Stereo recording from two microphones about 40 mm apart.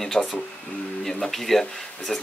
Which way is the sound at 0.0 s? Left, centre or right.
Centre.